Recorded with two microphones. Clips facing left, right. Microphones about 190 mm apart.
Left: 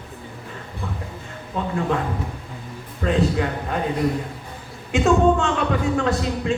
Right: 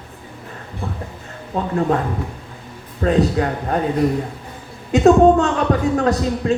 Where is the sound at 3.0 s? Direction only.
40° right (ahead or behind).